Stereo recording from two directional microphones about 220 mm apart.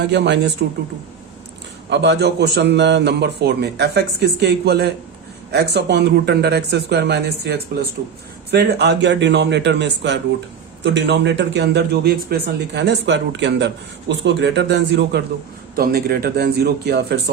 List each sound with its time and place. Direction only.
0.0 s a man's voice: 50° right (ahead or behind)
1.9 s a man's voice: 50° right (ahead or behind)